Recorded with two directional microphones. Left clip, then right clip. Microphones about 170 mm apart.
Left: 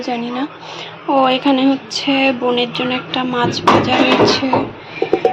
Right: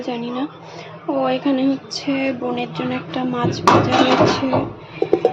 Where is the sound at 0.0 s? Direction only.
Centre (ahead or behind).